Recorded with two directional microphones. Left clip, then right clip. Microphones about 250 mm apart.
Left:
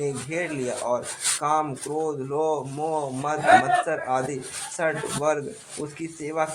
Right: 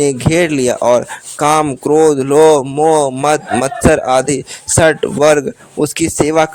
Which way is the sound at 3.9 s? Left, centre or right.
Right.